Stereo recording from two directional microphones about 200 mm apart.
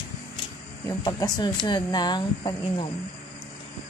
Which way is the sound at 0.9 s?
20° left (ahead or behind).